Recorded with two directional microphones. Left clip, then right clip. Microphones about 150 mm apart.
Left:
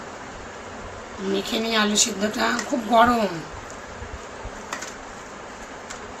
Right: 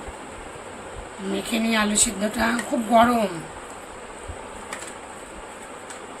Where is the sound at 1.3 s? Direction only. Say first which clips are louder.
Left 1 dB; 5° right (ahead or behind).